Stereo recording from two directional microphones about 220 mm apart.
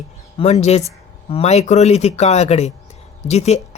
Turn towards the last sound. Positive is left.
turn(degrees=30)  # may be behind; listen again after turning